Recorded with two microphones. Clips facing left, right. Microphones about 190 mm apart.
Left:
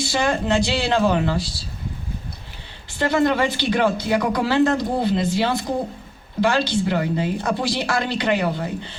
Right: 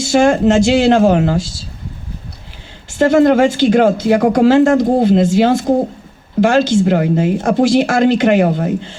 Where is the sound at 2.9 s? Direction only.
50° right (ahead or behind).